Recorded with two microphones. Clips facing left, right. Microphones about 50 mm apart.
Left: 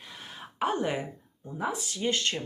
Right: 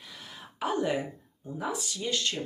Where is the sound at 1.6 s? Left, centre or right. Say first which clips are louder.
Left 2 dB; left.